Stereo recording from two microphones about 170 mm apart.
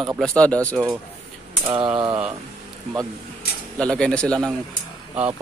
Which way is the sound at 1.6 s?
30° right (ahead or behind).